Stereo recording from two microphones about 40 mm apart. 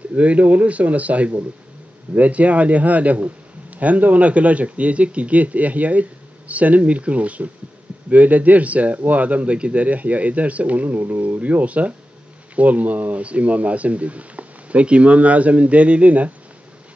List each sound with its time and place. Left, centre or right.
0.1 s a man's voice: right